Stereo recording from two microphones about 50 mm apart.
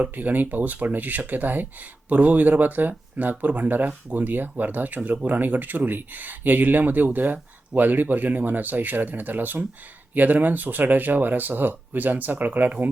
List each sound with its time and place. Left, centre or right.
0.0 s speech: right